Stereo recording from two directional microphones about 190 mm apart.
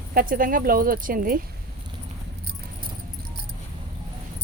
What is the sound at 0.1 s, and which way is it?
Speech, 50° right (ahead or behind).